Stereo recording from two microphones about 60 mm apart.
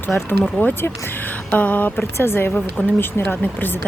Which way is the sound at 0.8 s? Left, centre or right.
Left.